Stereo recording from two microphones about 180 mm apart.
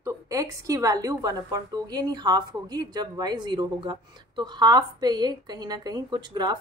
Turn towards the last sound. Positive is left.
turn(degrees=-25)  # may be behind; listen again after turning